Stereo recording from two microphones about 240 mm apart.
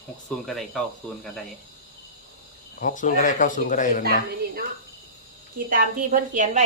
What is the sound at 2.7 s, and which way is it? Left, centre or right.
Speech, left.